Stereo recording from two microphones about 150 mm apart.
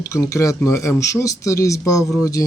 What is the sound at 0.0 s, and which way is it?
Speech, 20° left (ahead or behind).